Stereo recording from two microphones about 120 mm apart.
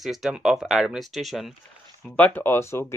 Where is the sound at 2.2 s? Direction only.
15° left (ahead or behind).